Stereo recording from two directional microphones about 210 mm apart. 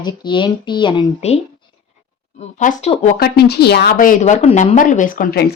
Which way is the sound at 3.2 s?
50° left (ahead or behind).